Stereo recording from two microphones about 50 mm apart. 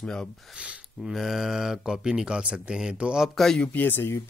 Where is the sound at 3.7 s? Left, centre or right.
Left.